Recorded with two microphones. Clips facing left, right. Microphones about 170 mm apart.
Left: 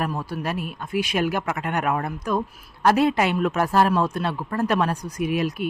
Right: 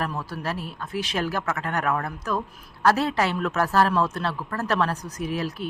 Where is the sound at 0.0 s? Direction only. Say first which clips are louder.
Left 3 dB; 15° left (ahead or behind).